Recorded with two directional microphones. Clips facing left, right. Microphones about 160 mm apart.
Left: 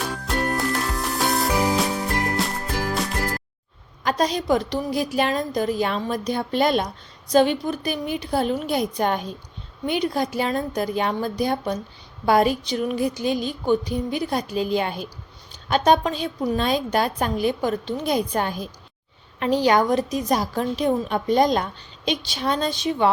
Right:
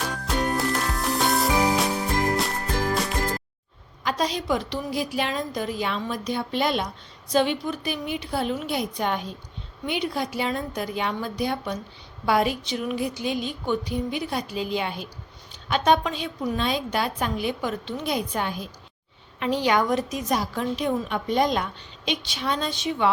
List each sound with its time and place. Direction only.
0.0 s music: centre (ahead or behind)
4.0 s a woman's voice: 45° left (ahead or behind)